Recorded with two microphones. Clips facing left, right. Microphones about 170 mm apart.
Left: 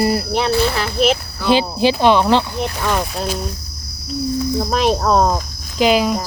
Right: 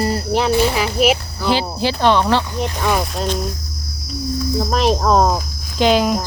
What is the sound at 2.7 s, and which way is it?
Speech, 10° right (ahead or behind).